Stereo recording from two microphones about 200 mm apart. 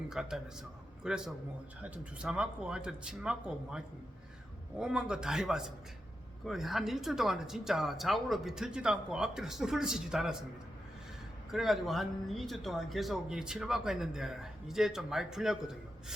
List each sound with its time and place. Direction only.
0.1 s speech: 5° right (ahead or behind)
11.5 s speech: centre (ahead or behind)